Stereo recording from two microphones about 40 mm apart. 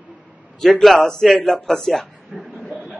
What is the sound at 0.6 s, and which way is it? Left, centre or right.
A man's voice, centre.